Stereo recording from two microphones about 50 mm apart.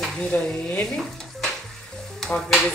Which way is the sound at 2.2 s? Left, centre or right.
Centre.